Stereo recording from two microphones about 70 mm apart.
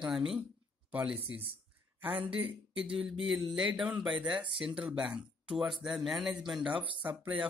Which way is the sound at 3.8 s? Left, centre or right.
Centre.